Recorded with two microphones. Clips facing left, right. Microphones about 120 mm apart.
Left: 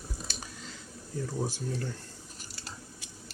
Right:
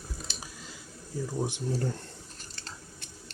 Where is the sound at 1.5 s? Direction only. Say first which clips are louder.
Right 4 dB; 25° right (ahead or behind).